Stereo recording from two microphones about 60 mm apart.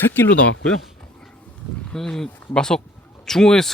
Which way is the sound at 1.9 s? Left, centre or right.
Centre.